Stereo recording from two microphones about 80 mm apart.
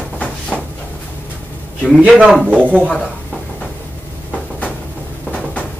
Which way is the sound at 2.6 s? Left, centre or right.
Centre.